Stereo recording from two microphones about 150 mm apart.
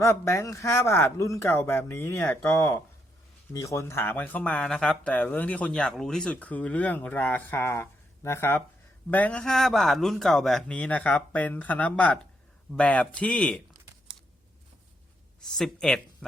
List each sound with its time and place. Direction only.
0.0 s speech: 20° left (ahead or behind)
15.5 s speech: 5° left (ahead or behind)